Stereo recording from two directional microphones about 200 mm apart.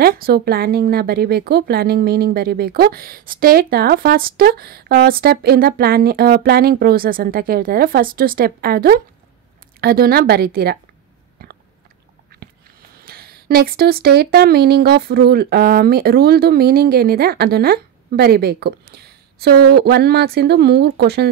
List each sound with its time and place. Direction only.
0.0 s speech: 50° right (ahead or behind)
11.4 s biting: 50° right (ahead or behind)
12.4 s a sound: 50° right (ahead or behind)
13.0 s speech: 50° right (ahead or behind)